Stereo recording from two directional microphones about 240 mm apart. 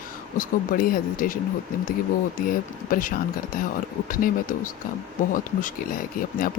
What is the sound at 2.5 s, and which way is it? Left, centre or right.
Speech, left.